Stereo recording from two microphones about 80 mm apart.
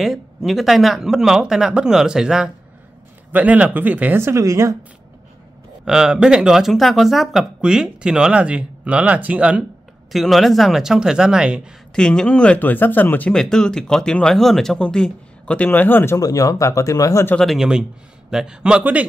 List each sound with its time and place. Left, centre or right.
0.0 s speech: centre
3.3 s speech: centre
4.2 s a woman's voice: right
5.9 s speech: centre
10.1 s speech: centre
11.9 s speech: centre
13.3 s speech: centre; by 16.2 s left
16.2 s speech: left
17.6 s speech: centre